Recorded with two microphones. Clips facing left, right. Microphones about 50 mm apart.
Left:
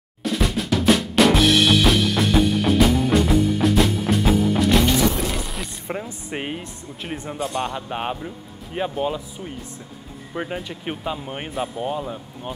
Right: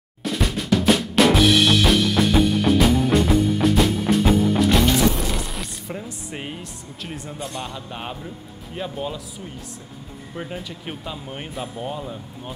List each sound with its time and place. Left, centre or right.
0.2 s drum: centre
5.4 s rub: centre
5.9 s speech: left
10.3 s speech: left